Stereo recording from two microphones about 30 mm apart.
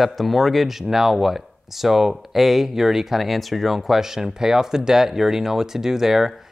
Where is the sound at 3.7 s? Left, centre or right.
Centre.